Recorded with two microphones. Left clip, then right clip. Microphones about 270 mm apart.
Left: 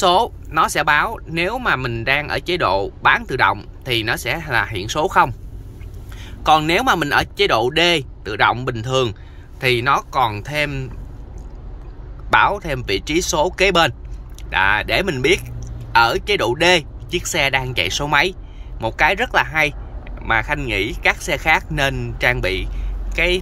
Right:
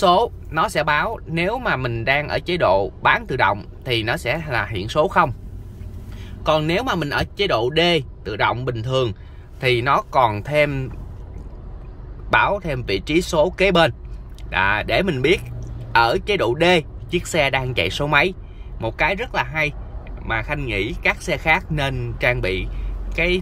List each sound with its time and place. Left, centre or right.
0.0 s speech: centre
6.4 s speech: centre
12.3 s speech: centre